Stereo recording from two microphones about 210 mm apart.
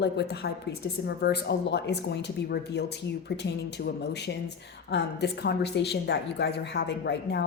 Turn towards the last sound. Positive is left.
turn(degrees=55)  # may be behind; listen again after turning